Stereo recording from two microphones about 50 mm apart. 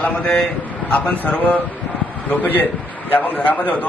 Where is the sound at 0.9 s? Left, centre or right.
Left.